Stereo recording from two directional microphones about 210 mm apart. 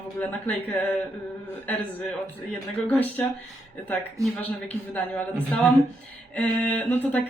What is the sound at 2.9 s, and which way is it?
Speech, 10° left (ahead or behind).